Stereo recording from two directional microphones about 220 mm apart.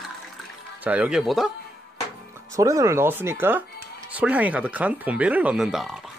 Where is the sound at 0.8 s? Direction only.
5° right (ahead or behind).